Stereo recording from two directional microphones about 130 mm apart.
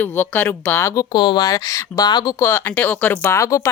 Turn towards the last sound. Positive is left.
turn(degrees=20)  # may be behind; listen again after turning